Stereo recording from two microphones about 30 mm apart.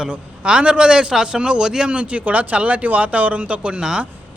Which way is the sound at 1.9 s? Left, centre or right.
Right.